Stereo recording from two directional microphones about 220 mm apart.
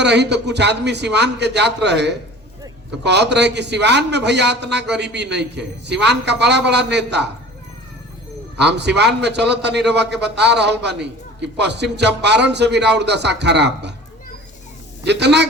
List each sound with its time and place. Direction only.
0.0 s a man's voice: 50° right (ahead or behind)
8.5 s a man's voice: 50° right (ahead or behind)
15.0 s a man's voice: 50° right (ahead or behind)